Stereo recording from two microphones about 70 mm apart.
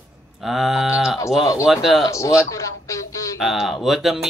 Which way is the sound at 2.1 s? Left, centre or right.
Left.